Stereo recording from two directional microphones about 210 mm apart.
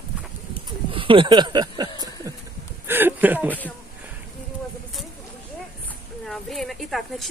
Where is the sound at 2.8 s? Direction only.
10° right (ahead or behind).